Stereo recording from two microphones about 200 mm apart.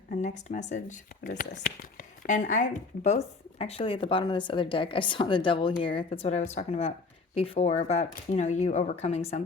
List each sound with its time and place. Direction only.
0.1 s speech: 35° left (ahead or behind)